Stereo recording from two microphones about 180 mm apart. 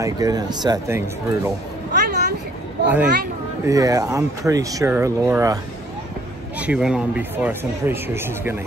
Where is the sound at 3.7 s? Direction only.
20° right (ahead or behind).